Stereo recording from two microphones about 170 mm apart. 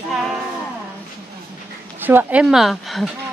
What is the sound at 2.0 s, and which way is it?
Speech, 10° right (ahead or behind).